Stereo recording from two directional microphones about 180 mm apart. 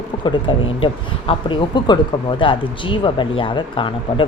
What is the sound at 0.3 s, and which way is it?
Speech, 30° left (ahead or behind).